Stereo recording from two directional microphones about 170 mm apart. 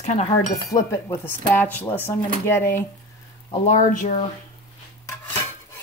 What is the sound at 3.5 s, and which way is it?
Speech, 45° left (ahead or behind).